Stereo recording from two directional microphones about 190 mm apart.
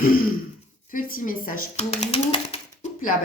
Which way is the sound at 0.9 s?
45° left (ahead or behind).